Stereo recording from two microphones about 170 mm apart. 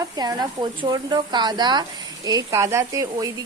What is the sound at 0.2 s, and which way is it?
Speech, 25° right (ahead or behind).